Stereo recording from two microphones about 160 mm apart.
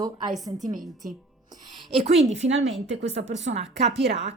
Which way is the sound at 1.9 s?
40° right (ahead or behind).